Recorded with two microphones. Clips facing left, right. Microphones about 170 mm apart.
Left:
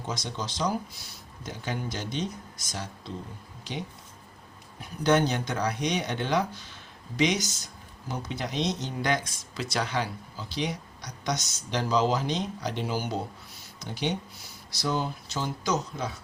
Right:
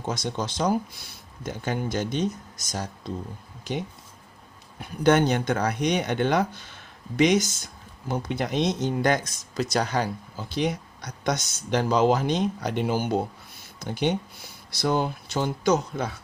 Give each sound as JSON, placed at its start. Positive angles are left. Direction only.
{"t": 0.1, "sound": "speech", "side_deg": -50}
{"t": 5.0, "sound": "speech", "side_deg": -55}